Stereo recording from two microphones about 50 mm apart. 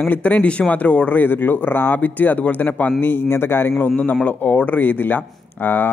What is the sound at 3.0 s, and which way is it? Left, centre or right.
A man's voice, left.